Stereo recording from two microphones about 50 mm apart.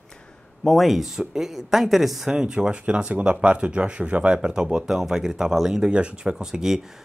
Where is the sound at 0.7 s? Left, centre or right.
Centre; by 4.8 s right.